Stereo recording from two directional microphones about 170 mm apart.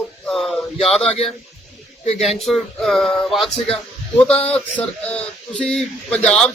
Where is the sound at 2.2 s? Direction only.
Centre (ahead or behind).